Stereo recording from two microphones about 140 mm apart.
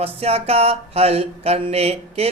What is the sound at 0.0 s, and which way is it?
Mantra, 45° right (ahead or behind).